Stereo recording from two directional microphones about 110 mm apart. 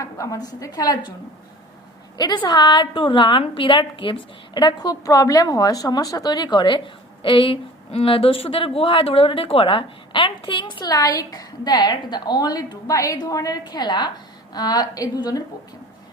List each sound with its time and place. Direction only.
0.0 s a woman's voice: 30° left (ahead or behind)
2.1 s a woman's voice: 40° left (ahead or behind)